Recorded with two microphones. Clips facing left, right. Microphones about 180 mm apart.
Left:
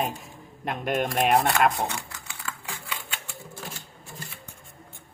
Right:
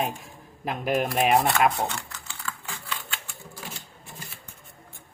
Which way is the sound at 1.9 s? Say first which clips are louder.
Left 1 dB; 15° left (ahead or behind).